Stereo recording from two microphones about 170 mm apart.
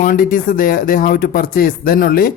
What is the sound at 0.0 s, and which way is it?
Speech, 55° left (ahead or behind).